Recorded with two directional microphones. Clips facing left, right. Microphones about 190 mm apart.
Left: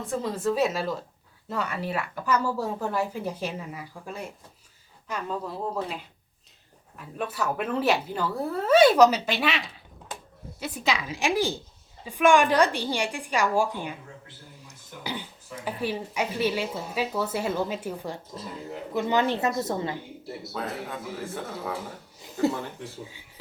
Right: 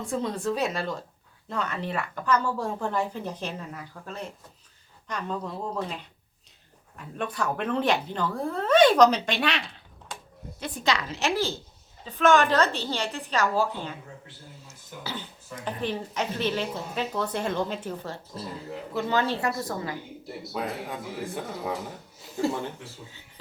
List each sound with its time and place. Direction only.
0.0 s a woman's voice: centre (ahead or behind)
15.0 s a sound: 15° left (ahead or behind)
15.4 s a woman's voice: 10° left (ahead or behind); by 20.0 s 25° left (ahead or behind)
20.5 s a man's voice: 15° right (ahead or behind)
22.4 s a woman's voice: 15° left (ahead or behind)